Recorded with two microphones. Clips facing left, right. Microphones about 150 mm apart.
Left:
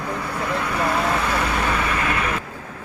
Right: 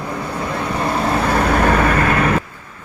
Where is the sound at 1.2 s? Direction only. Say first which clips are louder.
Right 7 dB; 45° right (ahead or behind).